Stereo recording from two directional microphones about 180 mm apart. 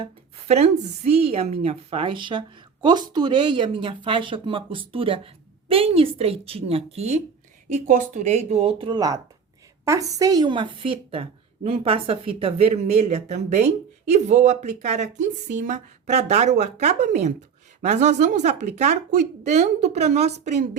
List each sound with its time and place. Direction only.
0.0 s a woman's voice: 35° right (ahead or behind)